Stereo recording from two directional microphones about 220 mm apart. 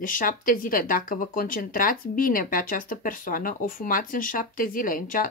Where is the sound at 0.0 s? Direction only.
40° left (ahead or behind).